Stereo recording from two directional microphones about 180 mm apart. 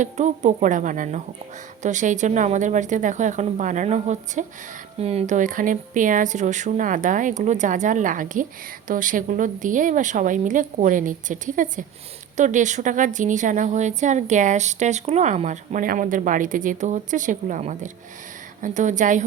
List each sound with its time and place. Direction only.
0.0 s a woman's voice: 40° right (ahead or behind)